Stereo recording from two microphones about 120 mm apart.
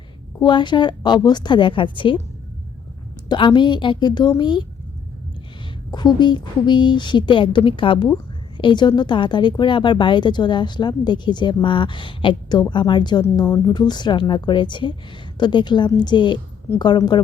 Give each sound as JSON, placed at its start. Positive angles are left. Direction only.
{"t": 0.4, "sound": "speech", "side_deg": 40}
{"t": 3.2, "sound": "speech", "side_deg": 40}
{"t": 5.9, "sound": "speech", "side_deg": 35}